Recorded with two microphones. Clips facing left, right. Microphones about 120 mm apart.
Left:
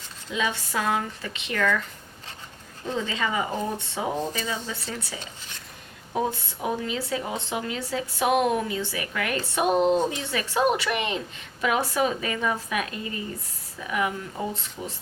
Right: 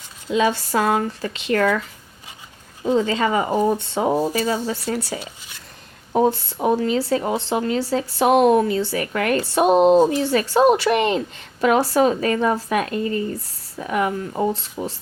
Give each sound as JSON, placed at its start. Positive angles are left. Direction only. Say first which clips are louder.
{"t": 0.3, "sound": "speech", "louder": "right 9 dB", "side_deg": -40}
{"t": 2.8, "sound": "speech", "louder": "right 9 dB", "side_deg": -40}